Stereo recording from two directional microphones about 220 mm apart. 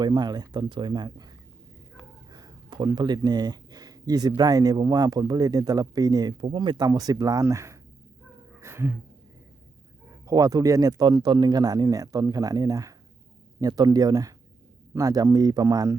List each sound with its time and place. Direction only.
0.0 s speech: 20° right (ahead or behind)
2.3 s speech: 20° right (ahead or behind)
8.6 s a sound: 10° right (ahead or behind)
10.1 s speech: 15° right (ahead or behind)